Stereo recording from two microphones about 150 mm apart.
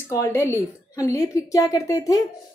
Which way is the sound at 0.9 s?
20° left (ahead or behind).